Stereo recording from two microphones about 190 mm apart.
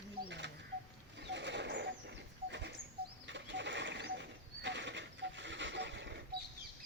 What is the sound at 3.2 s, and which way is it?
Bird, 70° right (ahead or behind).